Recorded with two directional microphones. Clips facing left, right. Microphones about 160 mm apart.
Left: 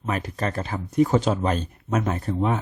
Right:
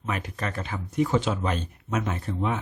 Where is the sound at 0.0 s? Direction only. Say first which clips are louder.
Left 4 dB; 35° left (ahead or behind).